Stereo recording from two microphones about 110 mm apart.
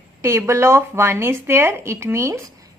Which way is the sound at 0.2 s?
25° right (ahead or behind).